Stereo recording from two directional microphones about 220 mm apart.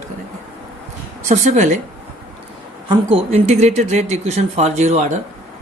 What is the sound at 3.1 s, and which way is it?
Speech, 30° right (ahead or behind).